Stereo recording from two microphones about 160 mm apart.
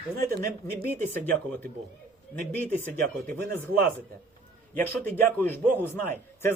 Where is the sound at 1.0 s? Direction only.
10° left (ahead or behind).